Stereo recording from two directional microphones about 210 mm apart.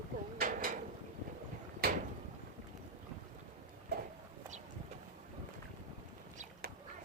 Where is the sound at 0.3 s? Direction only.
40° right (ahead or behind).